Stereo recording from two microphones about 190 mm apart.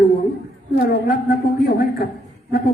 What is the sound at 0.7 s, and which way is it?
A man's voice, 50° left (ahead or behind).